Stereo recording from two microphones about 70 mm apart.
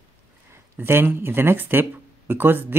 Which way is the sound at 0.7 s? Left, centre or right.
Right.